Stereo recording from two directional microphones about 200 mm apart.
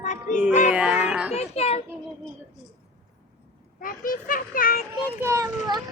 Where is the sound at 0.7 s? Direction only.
5° right (ahead or behind).